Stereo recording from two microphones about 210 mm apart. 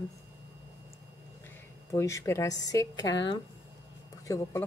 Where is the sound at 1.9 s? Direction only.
15° left (ahead or behind).